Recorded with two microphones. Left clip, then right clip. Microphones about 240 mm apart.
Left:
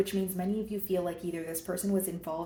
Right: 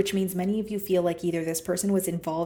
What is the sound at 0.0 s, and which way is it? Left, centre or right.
A woman's voice, right.